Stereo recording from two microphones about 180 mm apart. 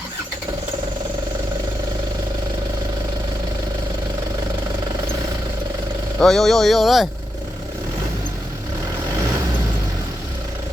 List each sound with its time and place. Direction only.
6.1 s speech: centre (ahead or behind)